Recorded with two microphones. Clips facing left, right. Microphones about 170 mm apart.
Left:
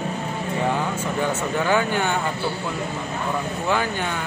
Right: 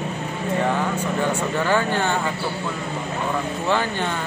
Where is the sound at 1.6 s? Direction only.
10° left (ahead or behind).